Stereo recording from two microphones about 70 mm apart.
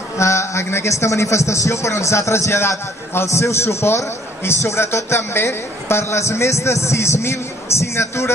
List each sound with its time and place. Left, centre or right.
0.2 s a man's voice: left